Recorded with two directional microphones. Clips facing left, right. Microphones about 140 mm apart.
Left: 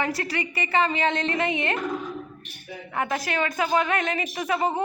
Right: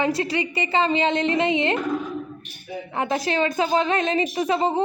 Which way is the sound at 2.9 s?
25° right (ahead or behind).